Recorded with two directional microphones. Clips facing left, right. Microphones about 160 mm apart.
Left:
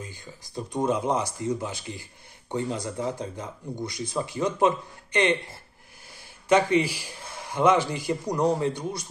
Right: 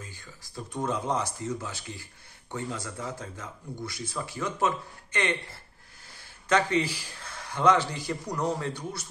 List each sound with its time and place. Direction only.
0.0 s speech: 20° left (ahead or behind)